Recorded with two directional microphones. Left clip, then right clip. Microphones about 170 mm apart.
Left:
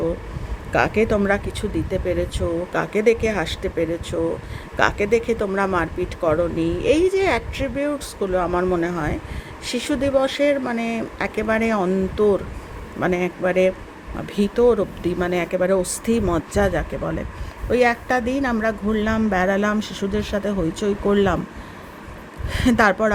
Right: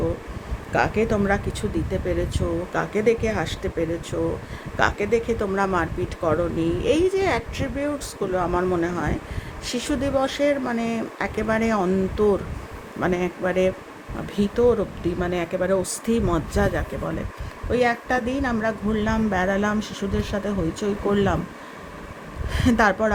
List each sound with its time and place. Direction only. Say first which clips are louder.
0.7 s speech: left 3 dB; 25° left (ahead or behind)
22.4 s speech: left 2 dB; 25° left (ahead or behind)